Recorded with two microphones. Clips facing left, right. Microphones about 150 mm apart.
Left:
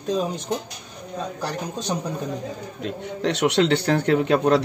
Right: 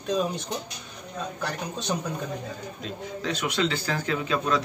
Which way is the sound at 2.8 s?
70° left (ahead or behind).